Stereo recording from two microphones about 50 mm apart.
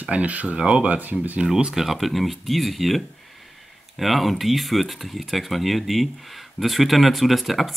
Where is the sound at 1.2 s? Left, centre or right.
Right.